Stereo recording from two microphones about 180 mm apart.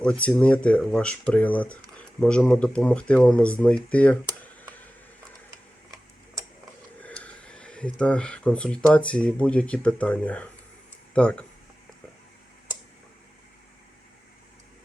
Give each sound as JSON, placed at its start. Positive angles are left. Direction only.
{"t": 0.0, "sound": "speech", "side_deg": 5}
{"t": 6.4, "sound": "tick-tock", "side_deg": -15}
{"t": 7.0, "sound": "a sound", "side_deg": 5}
{"t": 8.9, "sound": "speech", "side_deg": 5}